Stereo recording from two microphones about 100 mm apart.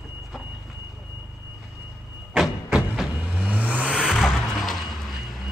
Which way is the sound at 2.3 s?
10° right (ahead or behind).